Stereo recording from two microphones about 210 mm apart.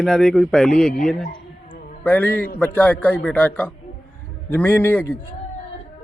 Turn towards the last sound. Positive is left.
turn(degrees=10)  # may be behind; listen again after turning